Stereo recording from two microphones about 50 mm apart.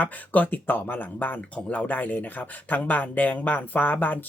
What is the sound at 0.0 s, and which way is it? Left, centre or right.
Speech, left.